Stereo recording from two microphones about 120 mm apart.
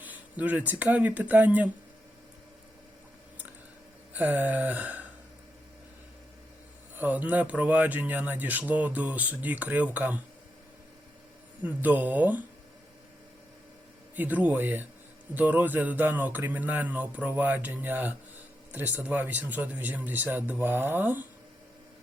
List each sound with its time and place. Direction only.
0.0 s speech: 15° right (ahead or behind)
4.1 s a sound: 15° right (ahead or behind)
7.0 s speech: 15° right (ahead or behind)
11.6 s speech: 15° right (ahead or behind)
14.2 s speech: 15° right (ahead or behind)